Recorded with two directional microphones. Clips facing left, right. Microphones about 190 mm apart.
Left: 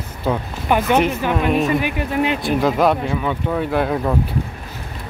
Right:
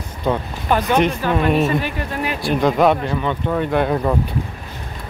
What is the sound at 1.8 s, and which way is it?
Speech, 15° left (ahead or behind).